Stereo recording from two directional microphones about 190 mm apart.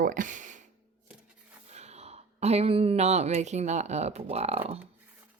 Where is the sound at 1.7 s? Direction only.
35° right (ahead or behind).